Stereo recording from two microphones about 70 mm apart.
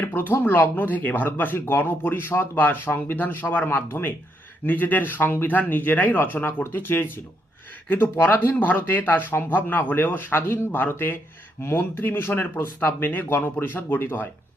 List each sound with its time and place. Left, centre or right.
0.0 s speech: left